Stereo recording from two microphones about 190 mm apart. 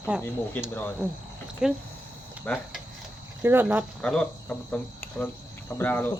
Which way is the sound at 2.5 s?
5° left (ahead or behind).